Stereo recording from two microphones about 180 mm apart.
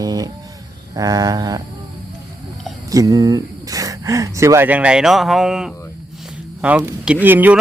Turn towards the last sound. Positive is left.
turn(degrees=-10)  # may be behind; listen again after turning